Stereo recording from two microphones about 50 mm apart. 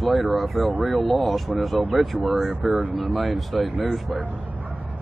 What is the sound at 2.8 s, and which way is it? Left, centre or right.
Speech, right.